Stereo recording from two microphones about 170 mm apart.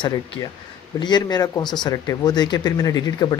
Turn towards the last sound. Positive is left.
turn(degrees=20)  # may be behind; listen again after turning